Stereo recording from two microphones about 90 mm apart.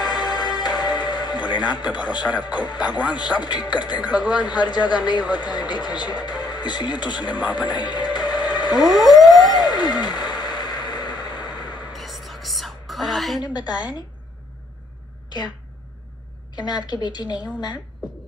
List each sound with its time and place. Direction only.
0.0 s music: 45° left (ahead or behind)
3.0 s a man's voice: 50° left (ahead or behind)
8.9 s a sound: centre (ahead or behind)
9.5 s a sound: 50° left (ahead or behind)
11.9 s whispering: centre (ahead or behind)
13.4 s a man's voice: 50° left (ahead or behind)
16.5 s a man's voice: 50° left (ahead or behind)